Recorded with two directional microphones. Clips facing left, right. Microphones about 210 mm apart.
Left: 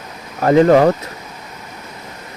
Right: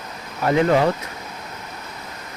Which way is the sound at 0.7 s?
45° left (ahead or behind).